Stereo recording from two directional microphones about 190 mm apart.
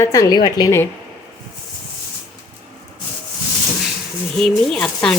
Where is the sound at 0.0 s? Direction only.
20° left (ahead or behind).